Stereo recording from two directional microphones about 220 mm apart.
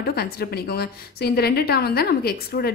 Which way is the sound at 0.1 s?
45° left (ahead or behind).